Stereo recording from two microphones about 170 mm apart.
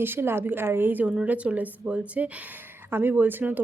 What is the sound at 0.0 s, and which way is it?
Speech, 15° right (ahead or behind).